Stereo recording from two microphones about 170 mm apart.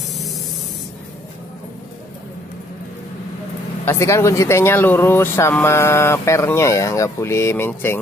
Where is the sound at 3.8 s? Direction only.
15° left (ahead or behind).